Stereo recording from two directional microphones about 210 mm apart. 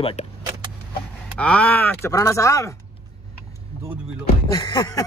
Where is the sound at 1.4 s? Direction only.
5° left (ahead or behind).